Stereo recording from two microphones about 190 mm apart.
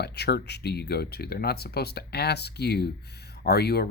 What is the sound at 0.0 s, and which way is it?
Speech, 60° left (ahead or behind).